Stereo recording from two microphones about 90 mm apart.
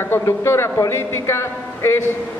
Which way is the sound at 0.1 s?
30° left (ahead or behind).